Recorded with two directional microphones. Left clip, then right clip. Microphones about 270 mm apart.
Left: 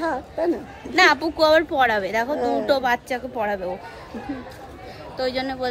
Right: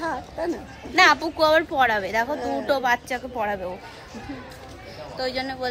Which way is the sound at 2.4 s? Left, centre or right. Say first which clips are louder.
Left 5 dB; left.